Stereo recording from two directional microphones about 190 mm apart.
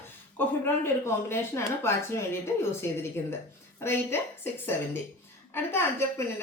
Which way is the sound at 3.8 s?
10° left (ahead or behind).